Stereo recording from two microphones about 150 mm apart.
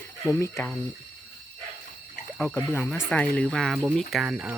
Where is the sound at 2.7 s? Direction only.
15° left (ahead or behind); by 4.5 s 10° right (ahead or behind).